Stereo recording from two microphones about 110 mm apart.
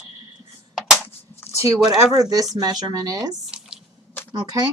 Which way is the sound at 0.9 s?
20° left (ahead or behind).